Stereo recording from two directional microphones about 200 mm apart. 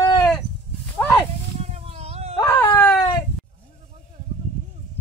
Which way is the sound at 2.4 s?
10° left (ahead or behind).